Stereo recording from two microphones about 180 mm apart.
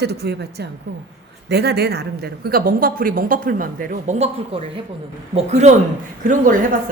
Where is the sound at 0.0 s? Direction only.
65° right (ahead or behind).